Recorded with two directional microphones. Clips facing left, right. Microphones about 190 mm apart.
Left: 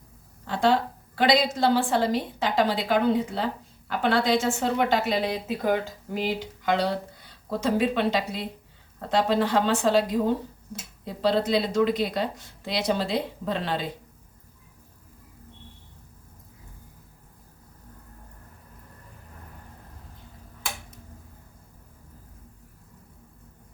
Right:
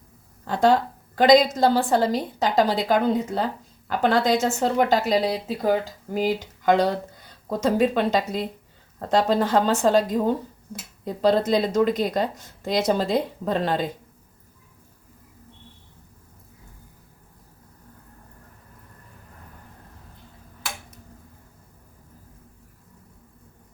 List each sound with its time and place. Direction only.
0.4 s a woman's voice: 45° right (ahead or behind)
6.1 s speech: 45° right (ahead or behind)